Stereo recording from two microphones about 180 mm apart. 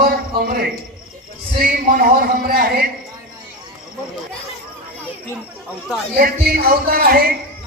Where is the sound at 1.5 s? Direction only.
55° right (ahead or behind).